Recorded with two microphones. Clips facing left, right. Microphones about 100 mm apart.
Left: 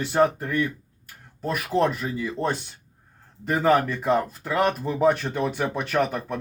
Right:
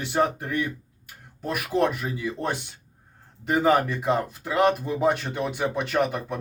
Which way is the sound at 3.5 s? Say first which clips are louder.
Even; 15° right (ahead or behind).